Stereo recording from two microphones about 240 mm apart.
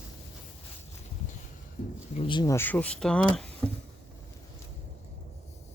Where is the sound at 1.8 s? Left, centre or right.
Left.